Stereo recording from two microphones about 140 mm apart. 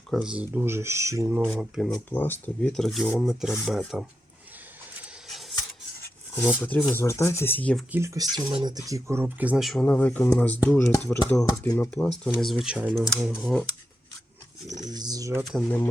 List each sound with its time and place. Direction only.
0.1 s speech: 5° right (ahead or behind); by 1.4 s 20° right (ahead or behind)
1.5 s speech: centre (ahead or behind)
2.0 s speech: 15° left (ahead or behind); by 4.0 s 5° right (ahead or behind)
6.3 s speech: 15° left (ahead or behind)
7.9 s speech: 20° right (ahead or behind)
9.2 s speech: 10° right (ahead or behind)
9.8 s speech: 10° left (ahead or behind)
12.2 s speech: centre (ahead or behind)
14.8 s a sound: 30° right (ahead or behind)